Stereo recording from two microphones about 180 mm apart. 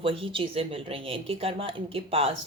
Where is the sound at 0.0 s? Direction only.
30° right (ahead or behind).